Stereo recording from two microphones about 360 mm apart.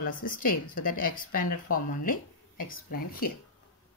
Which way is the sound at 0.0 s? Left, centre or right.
Left.